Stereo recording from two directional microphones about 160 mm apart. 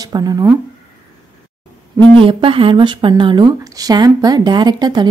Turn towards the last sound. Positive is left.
turn(degrees=-25)  # may be behind; listen again after turning